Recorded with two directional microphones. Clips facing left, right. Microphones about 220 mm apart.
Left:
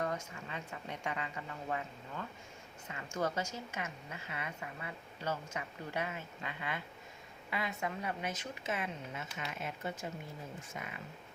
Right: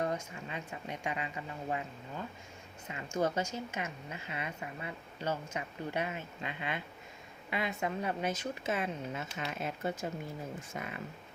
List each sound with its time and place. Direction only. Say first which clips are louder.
0.0 s speech: right 3 dB; 20° right (ahead or behind)
2.9 s a woman's voice: right 4 dB; 20° right (ahead or behind); by 10.9 s 40° right (ahead or behind)